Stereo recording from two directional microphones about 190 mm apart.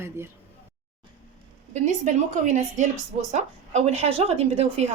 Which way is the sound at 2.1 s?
40° right (ahead or behind).